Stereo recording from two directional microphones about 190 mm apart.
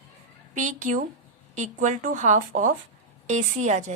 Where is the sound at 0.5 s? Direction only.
40° right (ahead or behind).